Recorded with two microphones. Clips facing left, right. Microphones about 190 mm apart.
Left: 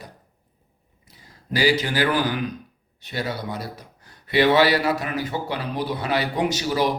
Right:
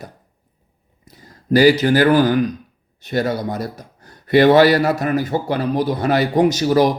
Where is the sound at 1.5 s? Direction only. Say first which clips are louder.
Right 9 dB; 45° right (ahead or behind).